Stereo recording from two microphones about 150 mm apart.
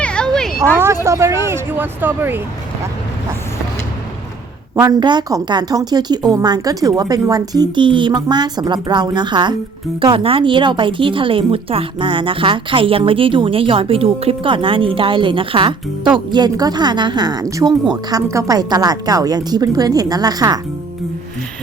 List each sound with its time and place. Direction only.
0.0 s a sound: 5° left (ahead or behind)
1.0 s speech: 20° right (ahead or behind)
4.7 s a woman's voice: 25° right (ahead or behind)